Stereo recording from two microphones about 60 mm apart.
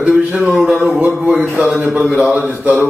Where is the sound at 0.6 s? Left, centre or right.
Right.